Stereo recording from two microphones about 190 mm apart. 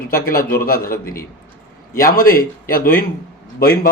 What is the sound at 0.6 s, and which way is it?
Speech, 50° left (ahead or behind).